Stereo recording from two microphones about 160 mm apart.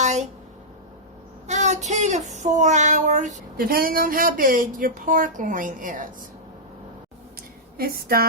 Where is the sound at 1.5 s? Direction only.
45° right (ahead or behind).